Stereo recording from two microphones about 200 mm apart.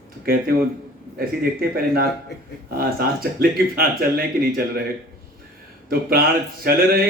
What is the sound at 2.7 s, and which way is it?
Speech, 50° right (ahead or behind).